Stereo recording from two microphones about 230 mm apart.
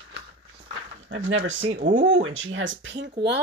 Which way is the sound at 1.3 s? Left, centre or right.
Right.